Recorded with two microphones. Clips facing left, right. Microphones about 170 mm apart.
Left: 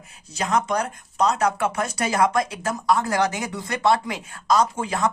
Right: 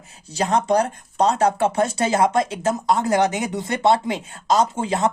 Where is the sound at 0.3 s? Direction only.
30° right (ahead or behind).